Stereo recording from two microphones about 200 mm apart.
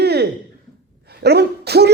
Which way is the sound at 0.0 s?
55° right (ahead or behind).